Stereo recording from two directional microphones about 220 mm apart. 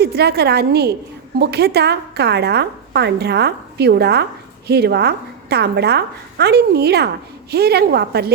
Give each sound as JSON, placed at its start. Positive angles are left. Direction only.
{"t": 0.0, "sound": "a woman's voice", "side_deg": -45}